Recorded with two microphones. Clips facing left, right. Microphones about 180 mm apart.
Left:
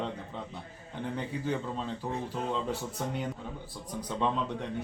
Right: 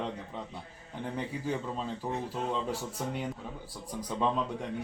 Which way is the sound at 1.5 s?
5° right (ahead or behind).